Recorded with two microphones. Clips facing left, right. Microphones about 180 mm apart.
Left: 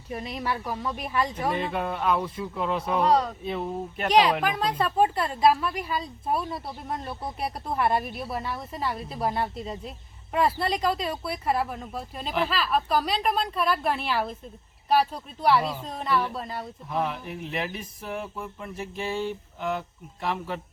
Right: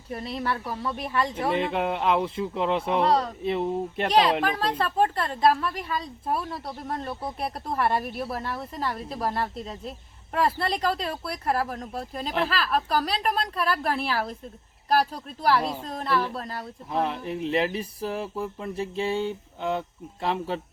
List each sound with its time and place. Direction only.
0.1 s a woman's voice: 5° left (ahead or behind)
1.5 s speech: 25° right (ahead or behind)
4.4 s a woman's voice: 5° left (ahead or behind)
16.9 s a sound: 30° right (ahead or behind)
20.2 s speech: 30° right (ahead or behind)